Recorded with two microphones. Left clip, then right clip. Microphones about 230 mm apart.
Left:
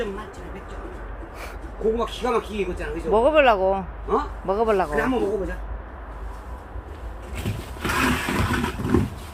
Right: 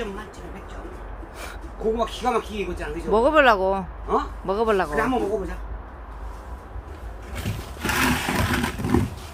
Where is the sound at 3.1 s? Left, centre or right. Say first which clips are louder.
Even; right.